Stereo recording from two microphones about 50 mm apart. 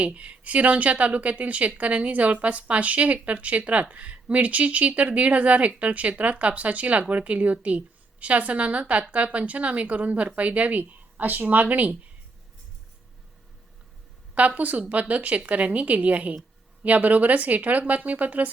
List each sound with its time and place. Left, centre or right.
0.0 s a woman's voice: right
14.3 s a woman's voice: right